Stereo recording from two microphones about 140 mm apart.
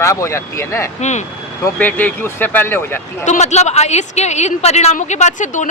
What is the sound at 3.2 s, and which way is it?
A woman's voice, 55° left (ahead or behind).